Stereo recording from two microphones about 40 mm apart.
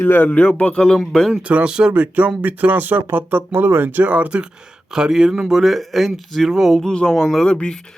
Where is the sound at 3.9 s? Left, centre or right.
Right.